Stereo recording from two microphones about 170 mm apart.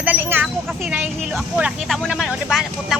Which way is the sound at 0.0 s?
10° right (ahead or behind).